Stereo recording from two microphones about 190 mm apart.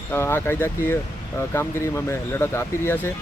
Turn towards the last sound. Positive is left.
turn(degrees=10)  # may be behind; listen again after turning